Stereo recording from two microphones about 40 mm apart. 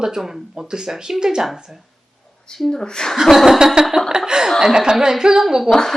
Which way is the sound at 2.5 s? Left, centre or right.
Centre.